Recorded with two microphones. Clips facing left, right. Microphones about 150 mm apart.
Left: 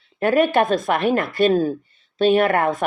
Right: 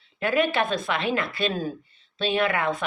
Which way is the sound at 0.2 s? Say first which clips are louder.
Left 6 dB; 45° left (ahead or behind).